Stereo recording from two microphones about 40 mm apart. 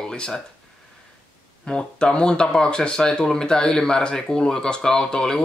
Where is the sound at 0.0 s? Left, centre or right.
Centre.